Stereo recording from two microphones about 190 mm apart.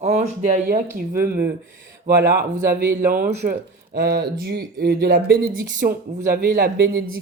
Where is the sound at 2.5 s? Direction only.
50° right (ahead or behind).